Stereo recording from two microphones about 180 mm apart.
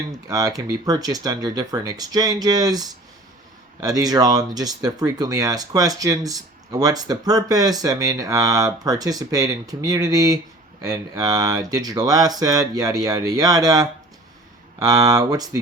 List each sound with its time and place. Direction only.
0.3 s speech: 20° right (ahead or behind)